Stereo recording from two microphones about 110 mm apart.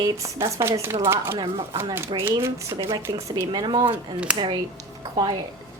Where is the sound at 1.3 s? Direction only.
40° right (ahead or behind).